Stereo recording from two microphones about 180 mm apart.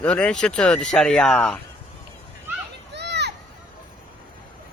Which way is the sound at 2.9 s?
70° right (ahead or behind).